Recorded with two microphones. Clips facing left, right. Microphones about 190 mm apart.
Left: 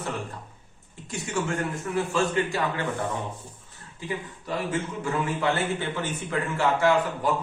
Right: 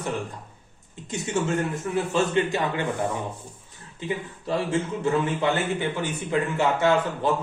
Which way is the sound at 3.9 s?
25° right (ahead or behind).